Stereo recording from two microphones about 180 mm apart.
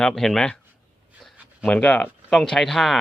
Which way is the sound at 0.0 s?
5° left (ahead or behind).